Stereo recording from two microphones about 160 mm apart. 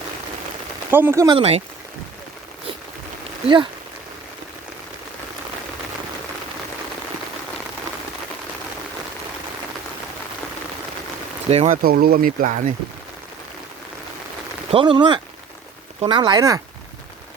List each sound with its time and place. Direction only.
0.9 s speech: 15° right (ahead or behind)
1.3 s speech: 40° right (ahead or behind)
3.4 s speech: 30° right (ahead or behind)
11.4 s speech: 40° right (ahead or behind)
11.7 s speech: 65° right (ahead or behind)
14.7 s speech: 30° right (ahead or behind)